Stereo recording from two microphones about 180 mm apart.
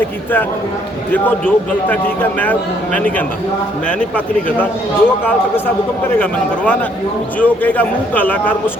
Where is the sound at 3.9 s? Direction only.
5° left (ahead or behind).